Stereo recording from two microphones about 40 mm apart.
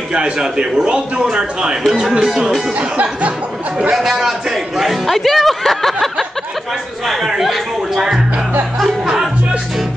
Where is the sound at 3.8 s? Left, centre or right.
Centre.